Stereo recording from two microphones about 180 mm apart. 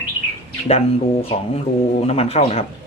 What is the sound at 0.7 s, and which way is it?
Speech, 35° left (ahead or behind).